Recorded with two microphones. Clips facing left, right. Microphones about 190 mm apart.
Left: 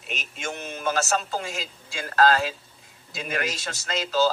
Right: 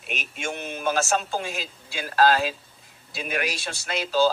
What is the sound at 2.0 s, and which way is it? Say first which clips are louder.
A man's voice: even; 10° right (ahead or behind).